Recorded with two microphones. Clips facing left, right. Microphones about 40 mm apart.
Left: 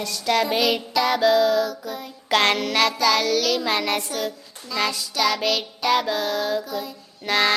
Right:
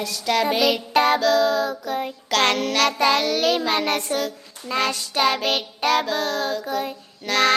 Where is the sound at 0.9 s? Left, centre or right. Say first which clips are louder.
Right 5 dB; right.